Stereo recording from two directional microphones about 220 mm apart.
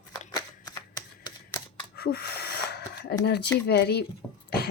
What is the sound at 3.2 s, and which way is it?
Speech, 50° left (ahead or behind).